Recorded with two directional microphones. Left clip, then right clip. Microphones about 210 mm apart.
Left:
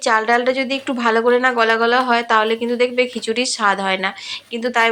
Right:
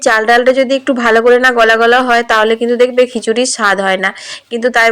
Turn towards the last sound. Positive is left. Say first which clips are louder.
# right 7 dB
turn(degrees=-20)  # may be behind; listen again after turning